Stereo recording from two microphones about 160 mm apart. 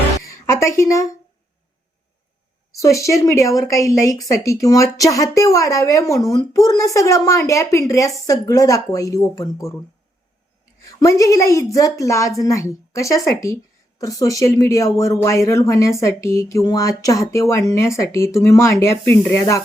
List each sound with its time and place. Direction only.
0.3 s a sound: 20° left (ahead or behind)
2.7 s speech: 20° left (ahead or behind)
11.0 s speech: 20° left (ahead or behind)